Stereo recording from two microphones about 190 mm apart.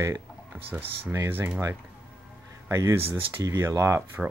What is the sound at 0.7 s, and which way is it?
Speech, 10° right (ahead or behind).